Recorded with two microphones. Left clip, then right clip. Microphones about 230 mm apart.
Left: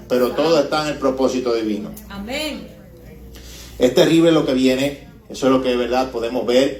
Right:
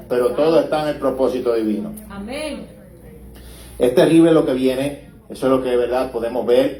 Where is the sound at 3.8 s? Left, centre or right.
Left.